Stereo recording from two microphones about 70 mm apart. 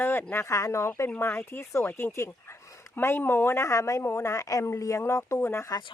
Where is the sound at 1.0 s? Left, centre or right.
Left.